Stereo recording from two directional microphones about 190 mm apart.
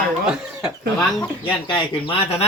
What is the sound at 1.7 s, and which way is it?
Speech, 30° left (ahead or behind).